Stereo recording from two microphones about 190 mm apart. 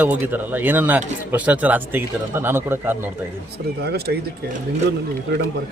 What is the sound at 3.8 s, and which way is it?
Speech, 55° right (ahead or behind).